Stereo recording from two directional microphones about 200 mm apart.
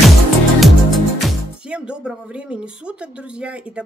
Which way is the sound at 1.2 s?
5° right (ahead or behind).